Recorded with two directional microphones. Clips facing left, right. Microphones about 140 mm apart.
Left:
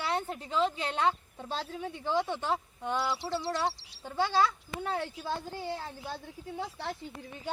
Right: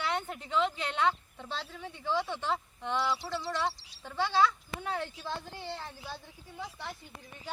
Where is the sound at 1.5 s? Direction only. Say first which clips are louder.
Left 4 dB; 45° left (ahead or behind).